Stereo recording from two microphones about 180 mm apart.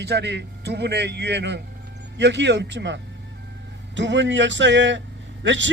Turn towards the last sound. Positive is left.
turn(degrees=-90)